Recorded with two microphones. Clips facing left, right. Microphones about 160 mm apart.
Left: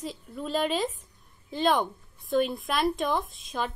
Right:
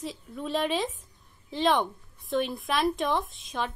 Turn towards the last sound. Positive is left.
turn(degrees=0)  # may be behind; listen again after turning